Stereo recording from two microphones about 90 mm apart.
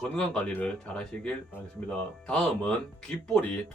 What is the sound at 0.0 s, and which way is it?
Speech, 10° left (ahead or behind).